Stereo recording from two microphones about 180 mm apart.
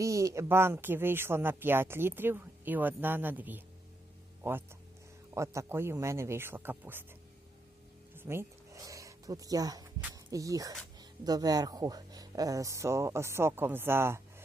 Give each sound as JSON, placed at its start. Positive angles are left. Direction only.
{"t": 0.0, "sound": "speech", "side_deg": -15}
{"t": 5.3, "sound": "speech", "side_deg": -15}
{"t": 8.1, "sound": "a sound", "side_deg": -10}
{"t": 10.0, "sound": "speech", "side_deg": -15}